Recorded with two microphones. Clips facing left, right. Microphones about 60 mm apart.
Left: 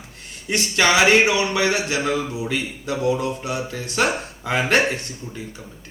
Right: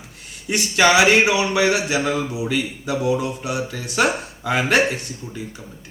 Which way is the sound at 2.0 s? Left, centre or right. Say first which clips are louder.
Even; centre.